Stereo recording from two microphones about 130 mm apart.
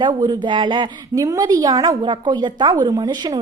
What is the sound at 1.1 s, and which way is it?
Speech, 25° right (ahead or behind).